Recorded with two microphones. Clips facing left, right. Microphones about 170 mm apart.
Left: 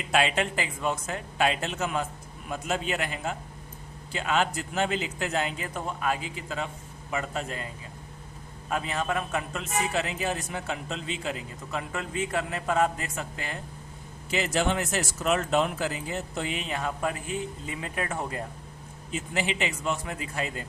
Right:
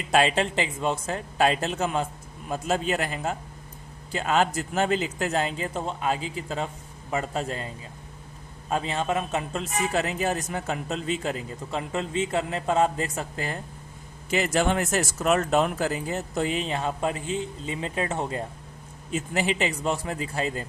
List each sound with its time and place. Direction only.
0.1 s speech: 35° right (ahead or behind)
8.7 s speech: 25° right (ahead or behind)
11.7 s a man's voice: 25° right (ahead or behind)
14.3 s speech: 50° right (ahead or behind); by 18.4 s 25° right (ahead or behind)
19.1 s speech: 45° right (ahead or behind)